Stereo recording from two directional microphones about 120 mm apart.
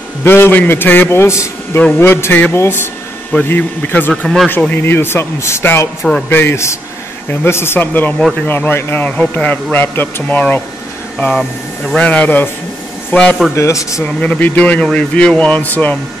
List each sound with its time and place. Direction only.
0.2 s a man's voice: 20° left (ahead or behind)
4.1 s speech: 5° left (ahead or behind)
4.5 s a man's voice: 15° left (ahead or behind)
13.6 s a man's voice: 25° left (ahead or behind)
14.0 s speech: 10° left (ahead or behind)